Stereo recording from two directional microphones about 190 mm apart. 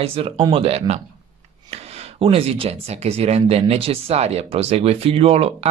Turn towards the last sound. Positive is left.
turn(degrees=-30)  # may be behind; listen again after turning